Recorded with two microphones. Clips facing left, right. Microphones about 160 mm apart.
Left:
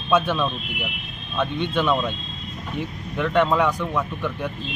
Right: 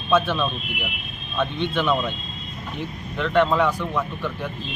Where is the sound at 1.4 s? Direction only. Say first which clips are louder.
Left 1 dB; 10° left (ahead or behind).